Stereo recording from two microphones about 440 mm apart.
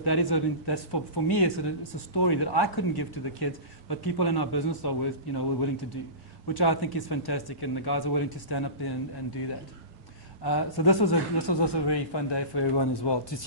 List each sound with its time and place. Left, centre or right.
0.0 s speech: left
10.4 s speech: left